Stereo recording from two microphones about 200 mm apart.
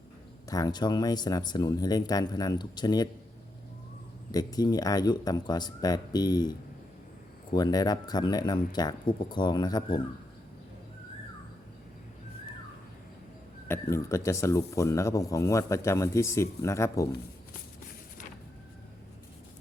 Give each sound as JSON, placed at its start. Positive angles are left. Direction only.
{"t": 0.5, "sound": "speech", "side_deg": 20}
{"t": 4.3, "sound": "speech", "side_deg": 20}
{"t": 13.7, "sound": "speech", "side_deg": 15}